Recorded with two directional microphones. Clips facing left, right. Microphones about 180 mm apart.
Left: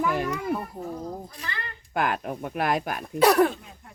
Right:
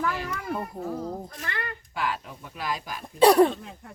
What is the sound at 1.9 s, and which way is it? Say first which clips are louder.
Speech: left 6 dB; 55° left (ahead or behind).